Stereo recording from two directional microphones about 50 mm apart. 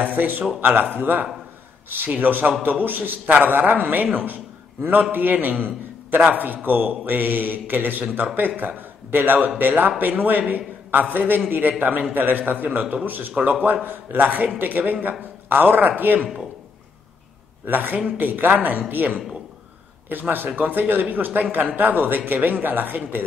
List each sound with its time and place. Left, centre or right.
0.0 s a man's voice: right
17.6 s a man's voice: right